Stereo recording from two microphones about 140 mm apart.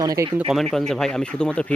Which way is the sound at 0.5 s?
Centre (ahead or behind).